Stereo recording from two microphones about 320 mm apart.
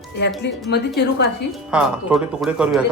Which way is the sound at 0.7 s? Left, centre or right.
Left.